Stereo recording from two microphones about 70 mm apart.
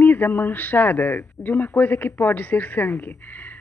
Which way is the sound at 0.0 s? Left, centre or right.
Left.